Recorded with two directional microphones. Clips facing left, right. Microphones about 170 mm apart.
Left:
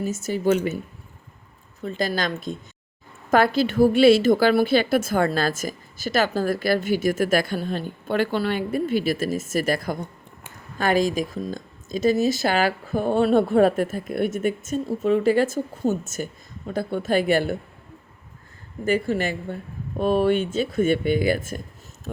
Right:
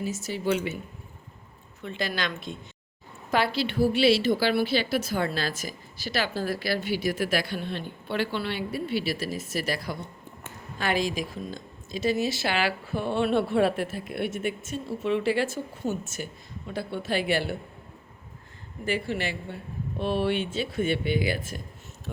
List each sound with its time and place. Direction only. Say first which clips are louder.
0.0 s speech: left 6 dB; 45° left (ahead or behind)
1.8 s a woman's voice: left 6 dB; 40° left (ahead or behind)
18.9 s speech: left 6 dB; 45° left (ahead or behind)